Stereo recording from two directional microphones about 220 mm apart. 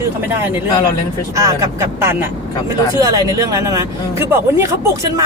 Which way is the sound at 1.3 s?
15° right (ahead or behind).